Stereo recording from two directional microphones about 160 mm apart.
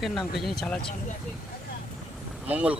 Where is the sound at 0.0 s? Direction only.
Centre (ahead or behind).